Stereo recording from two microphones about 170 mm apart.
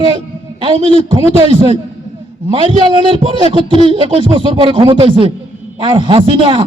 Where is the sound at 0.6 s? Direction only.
35° right (ahead or behind).